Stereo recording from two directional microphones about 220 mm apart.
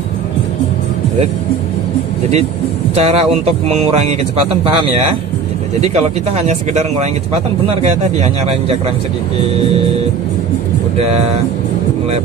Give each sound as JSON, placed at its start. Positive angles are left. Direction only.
{"t": 3.0, "sound": "speech", "side_deg": -25}
{"t": 5.8, "sound": "speech", "side_deg": -30}
{"t": 11.0, "sound": "speech", "side_deg": -30}